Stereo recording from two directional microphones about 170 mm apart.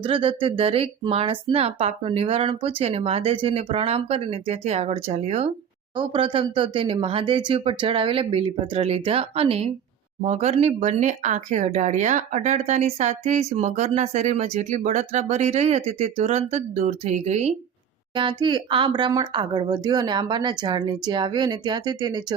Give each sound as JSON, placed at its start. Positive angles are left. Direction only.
{"t": 0.0, "sound": "speech", "side_deg": -30}
{"t": 18.1, "sound": "speech", "side_deg": -30}